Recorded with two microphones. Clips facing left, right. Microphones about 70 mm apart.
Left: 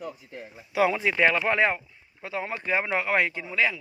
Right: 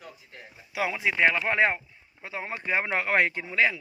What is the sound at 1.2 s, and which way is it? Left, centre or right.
Speech, centre.